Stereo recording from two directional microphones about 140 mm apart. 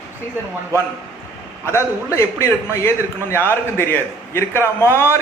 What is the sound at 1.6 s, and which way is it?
A man's voice, 20° left (ahead or behind).